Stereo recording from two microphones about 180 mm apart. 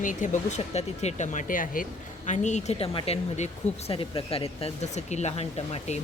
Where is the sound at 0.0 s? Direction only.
45° left (ahead or behind).